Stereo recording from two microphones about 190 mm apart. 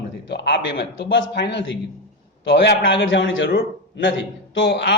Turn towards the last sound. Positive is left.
turn(degrees=65)  # may be behind; listen again after turning